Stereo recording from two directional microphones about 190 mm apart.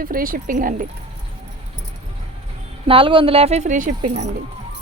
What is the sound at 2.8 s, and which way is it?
Speech, 25° right (ahead or behind).